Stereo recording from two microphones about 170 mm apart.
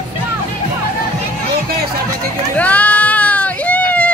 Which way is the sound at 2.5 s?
10° left (ahead or behind).